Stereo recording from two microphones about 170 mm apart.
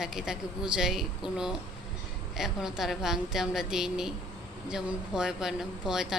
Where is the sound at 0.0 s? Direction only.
5° right (ahead or behind).